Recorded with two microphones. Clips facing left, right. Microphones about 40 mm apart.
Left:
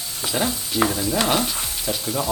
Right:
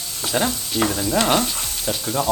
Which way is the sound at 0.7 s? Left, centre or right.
Centre.